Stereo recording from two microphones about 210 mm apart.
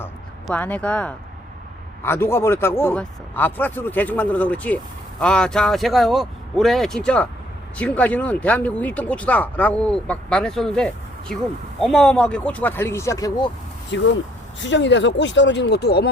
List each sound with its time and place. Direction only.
0.4 s speech: 5° left (ahead or behind)
13.9 s speech: 60° left (ahead or behind)